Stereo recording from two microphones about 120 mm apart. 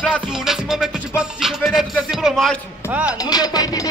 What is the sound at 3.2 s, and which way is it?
Speech, 35° left (ahead or behind).